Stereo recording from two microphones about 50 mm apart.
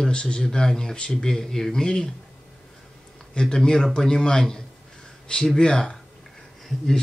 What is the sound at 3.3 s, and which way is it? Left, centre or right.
A man's voice, centre.